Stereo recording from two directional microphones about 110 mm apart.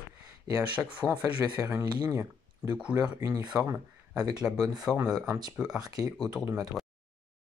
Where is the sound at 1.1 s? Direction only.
25° right (ahead or behind).